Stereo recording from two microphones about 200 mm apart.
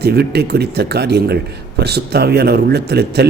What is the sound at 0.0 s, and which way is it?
A man's voice, 55° right (ahead or behind).